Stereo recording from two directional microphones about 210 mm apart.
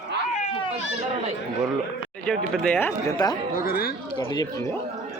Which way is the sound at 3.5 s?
45° left (ahead or behind).